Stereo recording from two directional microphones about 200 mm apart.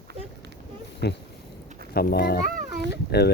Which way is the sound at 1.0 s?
55° left (ahead or behind).